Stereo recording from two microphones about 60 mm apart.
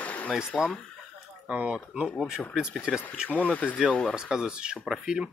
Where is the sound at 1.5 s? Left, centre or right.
Centre.